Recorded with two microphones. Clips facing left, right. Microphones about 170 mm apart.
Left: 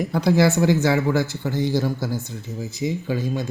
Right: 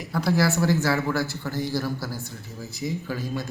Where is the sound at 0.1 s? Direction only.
20° left (ahead or behind).